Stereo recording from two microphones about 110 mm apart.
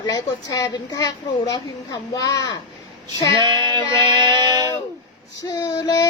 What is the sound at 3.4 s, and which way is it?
Music, 40° right (ahead or behind).